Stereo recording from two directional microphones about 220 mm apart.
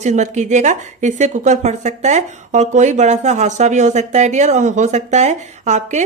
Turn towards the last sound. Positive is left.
turn(degrees=-30)  # may be behind; listen again after turning